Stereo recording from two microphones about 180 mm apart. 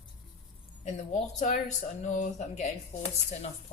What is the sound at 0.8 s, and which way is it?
Speech, 40° left (ahead or behind).